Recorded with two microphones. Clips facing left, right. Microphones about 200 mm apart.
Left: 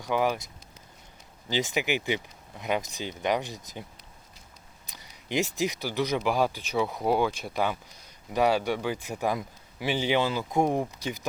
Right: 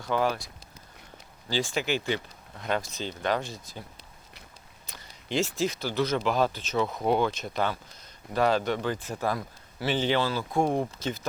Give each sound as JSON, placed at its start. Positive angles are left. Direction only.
{"t": 0.0, "sound": "speech", "side_deg": 15}
{"t": 1.5, "sound": "speech", "side_deg": 20}
{"t": 4.9, "sound": "speech", "side_deg": 15}